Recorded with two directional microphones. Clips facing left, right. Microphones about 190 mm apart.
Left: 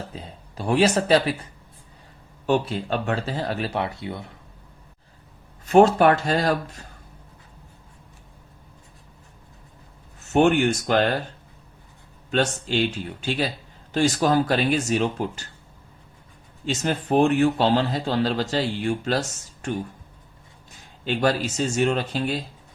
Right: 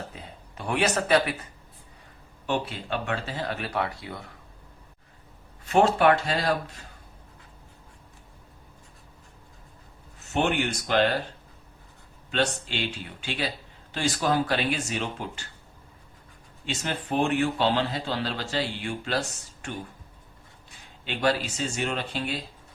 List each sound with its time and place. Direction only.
0.2 s speech: 35° left (ahead or behind)
2.5 s speech: 40° left (ahead or behind); by 4.4 s 25° left (ahead or behind)
5.6 s a man's voice: 45° left (ahead or behind)
10.3 s a man's voice: 45° left (ahead or behind)
12.3 s a man's voice: 45° left (ahead or behind)
13.9 s a man's voice: 45° left (ahead or behind)
16.8 s a man's voice: 45° left (ahead or behind)
21.0 s speech: 40° left (ahead or behind)